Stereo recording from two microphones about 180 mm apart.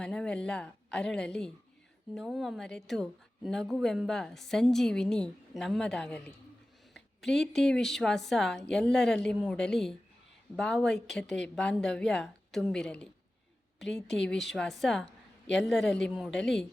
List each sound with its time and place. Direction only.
0.0 s a woman's voice: 5° left (ahead or behind)
7.3 s a woman's voice: 5° left (ahead or behind)
15.0 s a sound: 80° left
15.6 s a woman's voice: centre (ahead or behind)